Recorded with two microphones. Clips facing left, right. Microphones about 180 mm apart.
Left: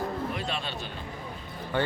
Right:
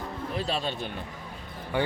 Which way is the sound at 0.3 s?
35° right (ahead or behind).